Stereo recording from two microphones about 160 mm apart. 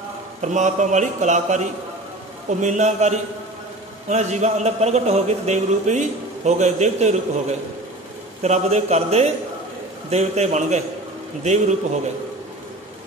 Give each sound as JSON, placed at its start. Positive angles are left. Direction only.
{"t": 0.4, "sound": "a man's voice", "side_deg": -50}
{"t": 2.6, "sound": "a man's voice", "side_deg": -45}
{"t": 8.4, "sound": "a man's voice", "side_deg": -45}